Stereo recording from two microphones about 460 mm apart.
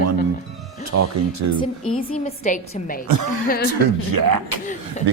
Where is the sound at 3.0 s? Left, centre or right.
Right.